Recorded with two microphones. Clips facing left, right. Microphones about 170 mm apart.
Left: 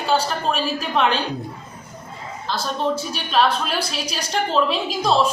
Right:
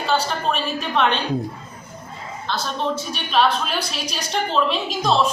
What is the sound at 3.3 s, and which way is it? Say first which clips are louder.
Speech: even; centre (ahead or behind).